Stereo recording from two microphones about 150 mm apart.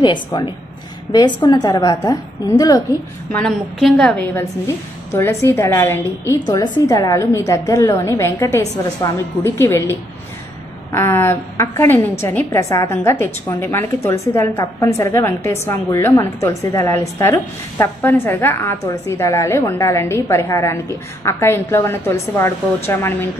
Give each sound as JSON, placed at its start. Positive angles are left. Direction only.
{"t": 0.0, "sound": "a woman's voice", "side_deg": 30}
{"t": 3.3, "sound": "a woman's voice", "side_deg": 10}
{"t": 4.2, "sound": "a woman's voice", "side_deg": 15}